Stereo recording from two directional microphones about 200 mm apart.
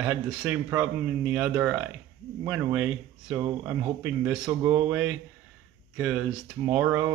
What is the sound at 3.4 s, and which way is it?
Speech, 15° right (ahead or behind).